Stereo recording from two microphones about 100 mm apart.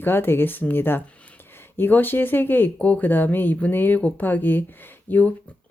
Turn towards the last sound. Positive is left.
turn(degrees=15)  # may be behind; listen again after turning